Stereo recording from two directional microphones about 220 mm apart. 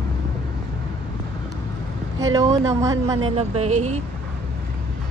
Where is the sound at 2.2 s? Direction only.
15° right (ahead or behind).